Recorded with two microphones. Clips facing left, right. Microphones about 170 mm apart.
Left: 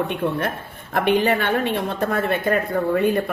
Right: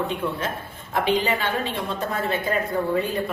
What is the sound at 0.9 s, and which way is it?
A woman's voice, 60° left (ahead or behind).